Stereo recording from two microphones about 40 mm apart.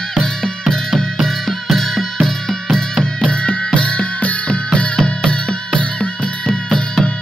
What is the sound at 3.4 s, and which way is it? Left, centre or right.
Music, left.